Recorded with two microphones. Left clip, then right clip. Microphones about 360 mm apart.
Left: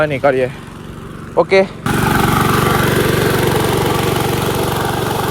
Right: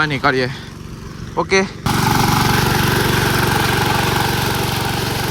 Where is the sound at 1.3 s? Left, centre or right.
Centre.